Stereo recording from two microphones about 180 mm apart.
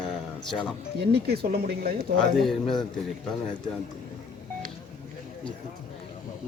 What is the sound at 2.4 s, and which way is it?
Speech, centre (ahead or behind).